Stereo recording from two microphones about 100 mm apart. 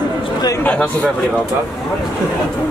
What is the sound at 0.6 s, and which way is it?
Speech, 15° left (ahead or behind).